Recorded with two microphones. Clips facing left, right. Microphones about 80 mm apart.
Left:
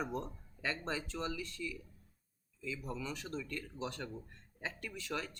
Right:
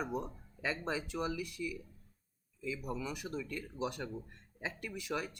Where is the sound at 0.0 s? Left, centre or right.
Centre.